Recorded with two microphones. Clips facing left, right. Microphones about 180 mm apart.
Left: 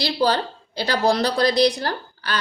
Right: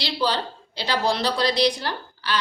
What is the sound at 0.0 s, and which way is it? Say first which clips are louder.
A woman's voice: left 4 dB; 45° left (ahead or behind).